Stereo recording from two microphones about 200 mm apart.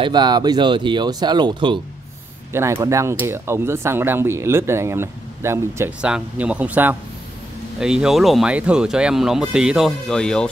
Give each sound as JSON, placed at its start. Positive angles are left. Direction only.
{"t": 0.0, "sound": "speech", "side_deg": -20}